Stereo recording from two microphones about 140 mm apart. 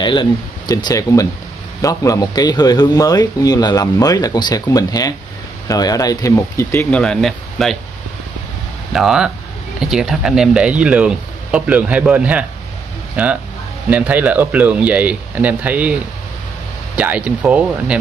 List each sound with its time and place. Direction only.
0.0 s a man's voice: 35° left (ahead or behind); by 7.0 s 20° left (ahead or behind)
7.0 s speech: 5° left (ahead or behind)
8.9 s speech: 5° right (ahead or behind)